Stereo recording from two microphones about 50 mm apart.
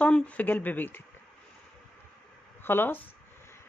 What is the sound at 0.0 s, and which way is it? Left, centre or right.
Speech, left.